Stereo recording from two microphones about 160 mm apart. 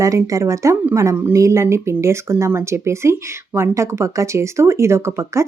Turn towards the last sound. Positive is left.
turn(degrees=-15)  # may be behind; listen again after turning